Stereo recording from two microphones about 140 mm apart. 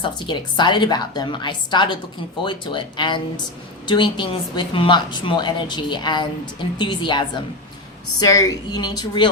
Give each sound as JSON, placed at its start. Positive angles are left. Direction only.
{"t": 0.0, "sound": "a woman's voice", "side_deg": 35}